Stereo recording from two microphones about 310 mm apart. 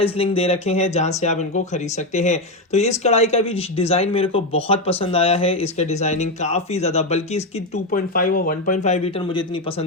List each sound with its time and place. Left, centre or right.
0.0 s speech: centre